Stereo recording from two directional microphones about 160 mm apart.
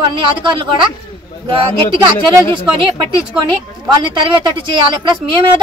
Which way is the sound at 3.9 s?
30° right (ahead or behind).